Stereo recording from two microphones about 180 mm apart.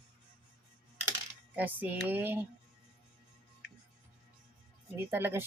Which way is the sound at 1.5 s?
10° right (ahead or behind).